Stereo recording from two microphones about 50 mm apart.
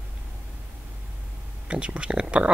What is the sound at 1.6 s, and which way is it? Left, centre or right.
Speech, right.